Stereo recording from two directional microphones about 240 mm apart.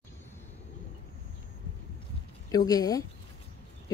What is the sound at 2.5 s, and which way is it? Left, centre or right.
Speech, centre.